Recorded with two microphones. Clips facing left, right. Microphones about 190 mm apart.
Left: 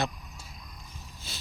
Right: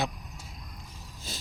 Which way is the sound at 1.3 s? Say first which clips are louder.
Right 4 dB; 45° right (ahead or behind).